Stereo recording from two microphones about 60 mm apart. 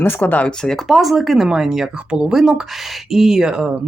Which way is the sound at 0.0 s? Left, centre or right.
Left.